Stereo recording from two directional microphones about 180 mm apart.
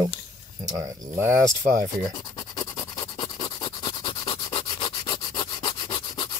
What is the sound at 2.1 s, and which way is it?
Scratch, 25° left (ahead or behind).